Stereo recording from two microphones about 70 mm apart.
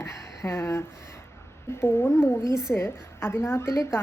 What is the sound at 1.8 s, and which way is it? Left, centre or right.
A woman's voice, left.